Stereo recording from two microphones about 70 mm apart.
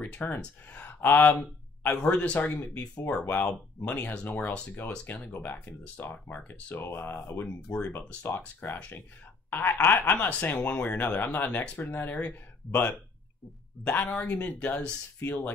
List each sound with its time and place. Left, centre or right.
0.0 s speech: left
9.5 s a sound: left
9.8 s speech: left
13.8 s speech: centre
14.1 s speech: centre